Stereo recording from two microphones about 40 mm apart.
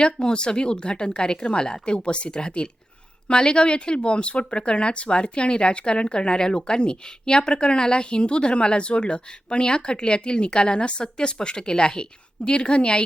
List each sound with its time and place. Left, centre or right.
0.0 s speech: left